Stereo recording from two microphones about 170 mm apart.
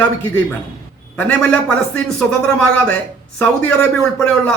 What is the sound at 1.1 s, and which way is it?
Speech, 10° left (ahead or behind).